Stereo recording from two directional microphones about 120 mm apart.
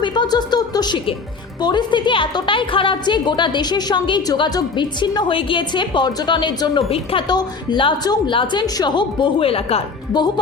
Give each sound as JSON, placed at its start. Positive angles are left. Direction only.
{"t": 0.0, "sound": "a sound", "side_deg": 40}
{"t": 1.6, "sound": "a woman's voice", "side_deg": 40}
{"t": 6.8, "sound": "a woman's voice", "side_deg": 50}
{"t": 7.3, "sound": "a woman's voice", "side_deg": 35}
{"t": 10.1, "sound": "a woman's voice", "side_deg": 35}